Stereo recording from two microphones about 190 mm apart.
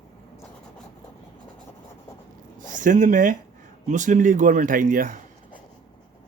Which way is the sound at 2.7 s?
45° right (ahead or behind).